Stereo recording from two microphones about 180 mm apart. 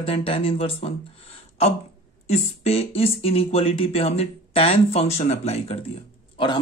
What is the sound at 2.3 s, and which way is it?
Speech, 35° left (ahead or behind).